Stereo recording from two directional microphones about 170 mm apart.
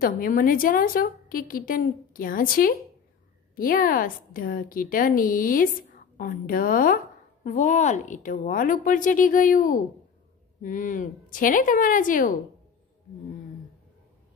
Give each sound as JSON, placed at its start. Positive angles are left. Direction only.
{"t": 0.0, "sound": "a woman's voice", "side_deg": 55}